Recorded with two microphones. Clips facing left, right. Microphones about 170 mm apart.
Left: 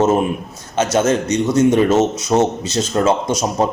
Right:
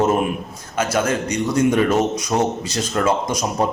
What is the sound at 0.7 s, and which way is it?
Speech, 25° left (ahead or behind).